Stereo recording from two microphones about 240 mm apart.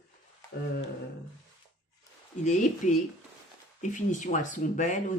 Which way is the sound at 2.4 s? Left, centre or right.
Left.